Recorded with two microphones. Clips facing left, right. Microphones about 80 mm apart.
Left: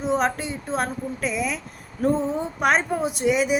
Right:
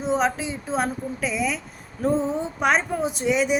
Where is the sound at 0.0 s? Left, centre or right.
Centre.